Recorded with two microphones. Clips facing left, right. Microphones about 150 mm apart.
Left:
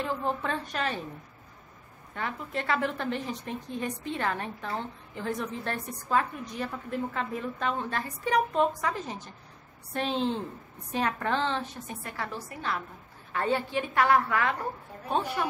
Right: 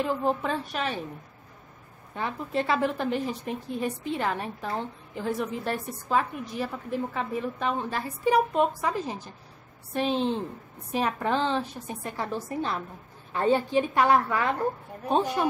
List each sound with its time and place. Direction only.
0.0 s a woman's voice: 10° right (ahead or behind)
2.1 s a woman's voice: 20° right (ahead or behind)